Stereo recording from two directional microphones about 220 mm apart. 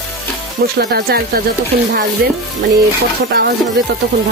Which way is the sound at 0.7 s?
45° right (ahead or behind).